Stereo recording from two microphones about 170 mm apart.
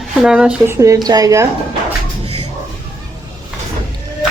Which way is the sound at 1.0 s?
20° right (ahead or behind).